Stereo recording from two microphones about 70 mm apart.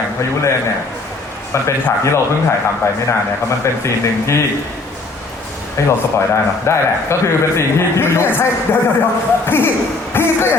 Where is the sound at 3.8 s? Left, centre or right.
Left.